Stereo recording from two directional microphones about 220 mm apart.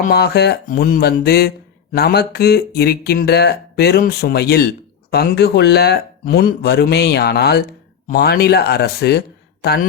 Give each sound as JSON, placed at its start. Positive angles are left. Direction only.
{"t": 0.0, "sound": "speech", "side_deg": 45}